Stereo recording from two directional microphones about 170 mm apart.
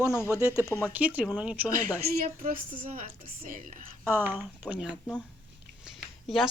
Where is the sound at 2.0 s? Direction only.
50° right (ahead or behind).